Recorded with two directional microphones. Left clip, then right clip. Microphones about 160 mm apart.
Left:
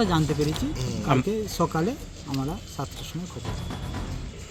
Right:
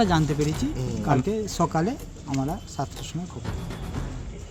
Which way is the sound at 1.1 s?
Centre (ahead or behind).